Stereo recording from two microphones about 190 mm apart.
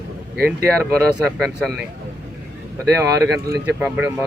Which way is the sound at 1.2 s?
Centre (ahead or behind).